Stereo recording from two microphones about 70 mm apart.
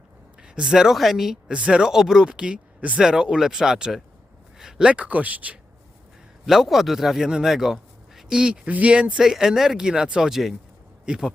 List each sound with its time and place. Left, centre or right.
0.4 s speech: centre
4.5 s a sound: centre
4.9 s speech: centre
6.4 s a man's voice: centre